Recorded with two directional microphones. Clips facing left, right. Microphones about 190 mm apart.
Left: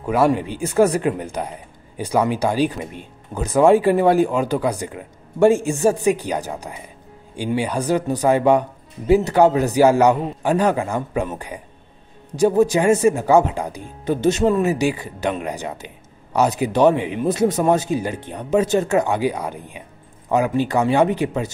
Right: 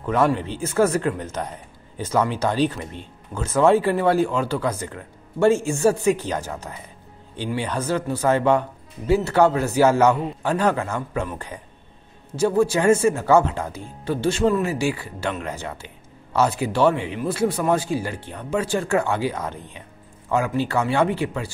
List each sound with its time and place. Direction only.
0.0 s speech: 10° left (ahead or behind)